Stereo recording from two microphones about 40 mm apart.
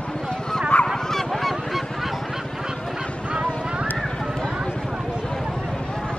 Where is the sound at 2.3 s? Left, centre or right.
Centre.